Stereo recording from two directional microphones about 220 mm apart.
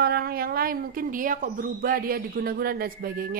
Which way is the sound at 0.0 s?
45° right (ahead or behind).